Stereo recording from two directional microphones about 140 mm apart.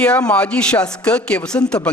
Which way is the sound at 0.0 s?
10° left (ahead or behind).